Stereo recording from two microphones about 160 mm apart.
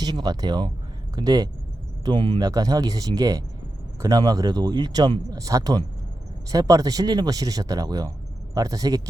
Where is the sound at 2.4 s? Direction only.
20° right (ahead or behind).